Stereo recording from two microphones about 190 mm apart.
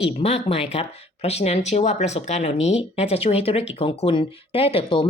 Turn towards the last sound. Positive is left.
turn(degrees=30)  # may be behind; listen again after turning